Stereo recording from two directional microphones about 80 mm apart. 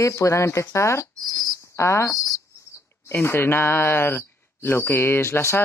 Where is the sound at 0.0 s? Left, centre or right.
Left.